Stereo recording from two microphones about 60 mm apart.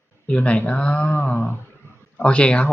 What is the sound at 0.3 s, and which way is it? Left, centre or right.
Speech, left.